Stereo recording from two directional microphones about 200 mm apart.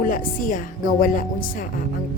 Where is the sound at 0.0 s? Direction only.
45° left (ahead or behind).